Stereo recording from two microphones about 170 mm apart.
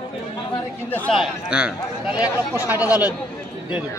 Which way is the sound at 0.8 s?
10° left (ahead or behind).